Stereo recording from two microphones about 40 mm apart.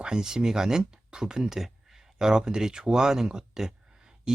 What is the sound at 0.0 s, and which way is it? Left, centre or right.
Speech, centre.